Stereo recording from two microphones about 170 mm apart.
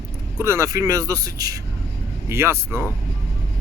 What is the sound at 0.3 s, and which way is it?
Speech, 15° right (ahead or behind).